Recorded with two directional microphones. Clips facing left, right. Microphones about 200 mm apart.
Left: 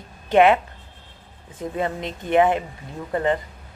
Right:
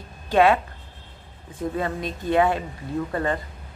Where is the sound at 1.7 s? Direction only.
20° left (ahead or behind).